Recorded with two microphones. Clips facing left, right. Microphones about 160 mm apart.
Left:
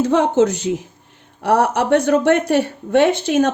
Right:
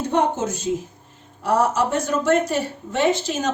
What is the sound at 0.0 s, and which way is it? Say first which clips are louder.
A woman's voice: left 6 dB; 90° left.